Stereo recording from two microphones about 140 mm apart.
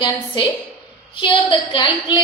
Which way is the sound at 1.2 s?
35° left (ahead or behind).